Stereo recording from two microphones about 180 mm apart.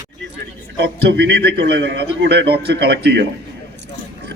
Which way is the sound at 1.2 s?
65° right (ahead or behind).